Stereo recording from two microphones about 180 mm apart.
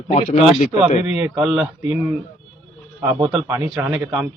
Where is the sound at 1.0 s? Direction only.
10° right (ahead or behind).